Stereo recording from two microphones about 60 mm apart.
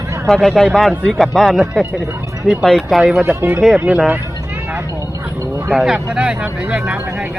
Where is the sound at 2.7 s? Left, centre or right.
Centre.